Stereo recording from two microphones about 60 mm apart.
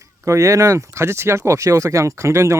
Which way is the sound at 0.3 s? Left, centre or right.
Right.